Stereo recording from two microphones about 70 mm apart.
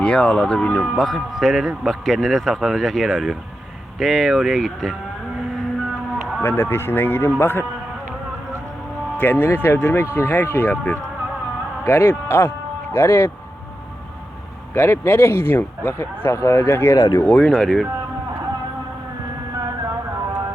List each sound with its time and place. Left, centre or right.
0.0 s speech: centre
1.0 s a man's voice: centre
6.4 s speech: left
9.1 s speech: left
14.7 s speech: left
17.2 s speech: centre
17.5 s speech: centre